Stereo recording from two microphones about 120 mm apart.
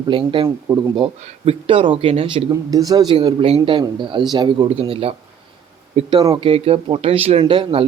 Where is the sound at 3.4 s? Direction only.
60° right (ahead or behind).